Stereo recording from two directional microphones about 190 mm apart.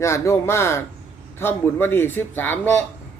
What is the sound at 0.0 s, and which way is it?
Speech, 15° left (ahead or behind).